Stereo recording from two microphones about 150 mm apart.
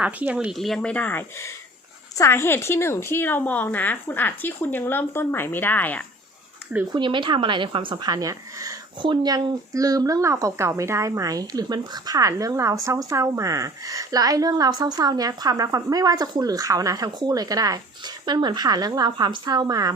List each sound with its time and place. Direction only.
0.0 s a woman's voice: 10° right (ahead or behind); by 6.1 s 10° left (ahead or behind)
6.9 s speech: 30° right (ahead or behind)